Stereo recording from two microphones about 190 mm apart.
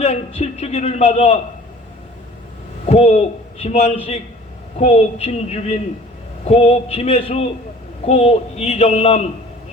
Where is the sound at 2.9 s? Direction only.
35° left (ahead or behind).